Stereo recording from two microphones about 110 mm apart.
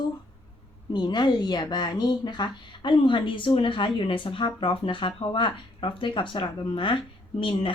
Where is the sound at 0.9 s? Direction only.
40° left (ahead or behind).